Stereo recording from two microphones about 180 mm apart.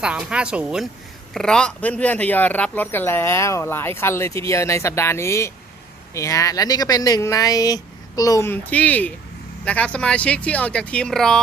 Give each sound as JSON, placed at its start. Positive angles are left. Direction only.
{"t": 0.0, "sound": "speech", "side_deg": -5}